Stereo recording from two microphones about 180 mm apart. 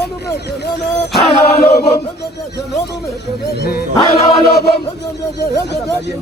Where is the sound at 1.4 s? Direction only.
60° left (ahead or behind).